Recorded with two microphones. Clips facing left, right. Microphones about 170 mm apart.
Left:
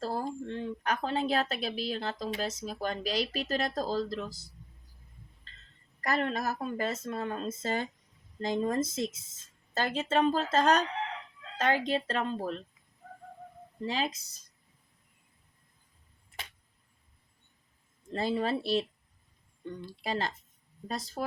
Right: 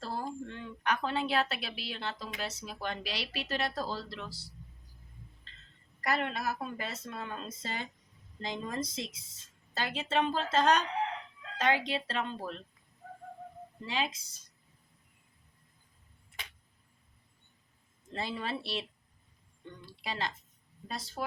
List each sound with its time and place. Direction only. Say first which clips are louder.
0.0 s a woman's voice: left 4 dB; 30° left (ahead or behind)
6.0 s a woman's voice: left 2 dB; 40° left (ahead or behind)
13.8 s speech: left 3 dB; 40° left (ahead or behind)
18.1 s speech: left 7 dB; 40° left (ahead or behind)
20.0 s a woman's voice: left 3 dB; 45° left (ahead or behind)